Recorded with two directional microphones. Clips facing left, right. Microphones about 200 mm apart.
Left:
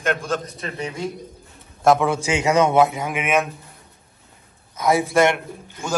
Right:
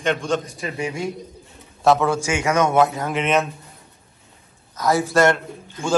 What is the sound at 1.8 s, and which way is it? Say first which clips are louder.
Speech: even; 10° left (ahead or behind).